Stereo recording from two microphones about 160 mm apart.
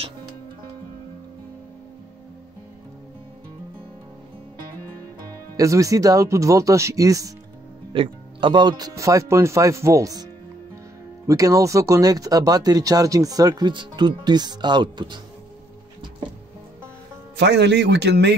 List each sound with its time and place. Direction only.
5.6 s speech: 20° right (ahead or behind)
7.9 s speech: 30° right (ahead or behind)
11.2 s speech: 20° right (ahead or behind)
17.4 s a man's voice: 90° right